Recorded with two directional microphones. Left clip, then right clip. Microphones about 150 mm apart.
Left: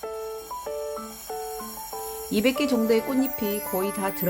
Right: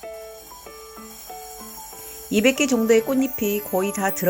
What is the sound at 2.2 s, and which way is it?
Speech, 15° right (ahead or behind).